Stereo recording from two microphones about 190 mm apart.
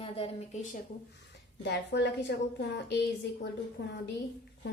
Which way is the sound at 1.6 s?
65° left (ahead or behind).